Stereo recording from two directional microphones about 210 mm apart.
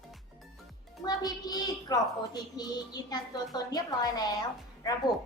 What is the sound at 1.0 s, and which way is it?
Speech, 20° left (ahead or behind).